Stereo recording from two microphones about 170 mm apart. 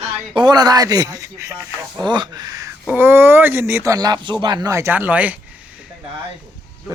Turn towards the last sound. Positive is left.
turn(degrees=-10)  # may be behind; listen again after turning